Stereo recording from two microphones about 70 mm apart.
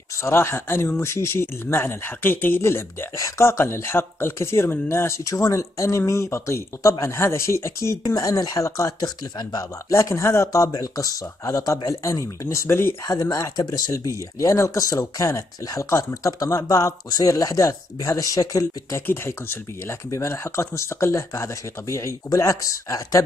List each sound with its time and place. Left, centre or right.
0.2 s speech: left
3.2 s speech: left
8.0 s speech: left
9.0 s speech: left
9.8 s speech: left
10.7 s speech: left
12.6 s speech: left
13.0 s speech: left
18.9 s speech: left
20.1 s speech: left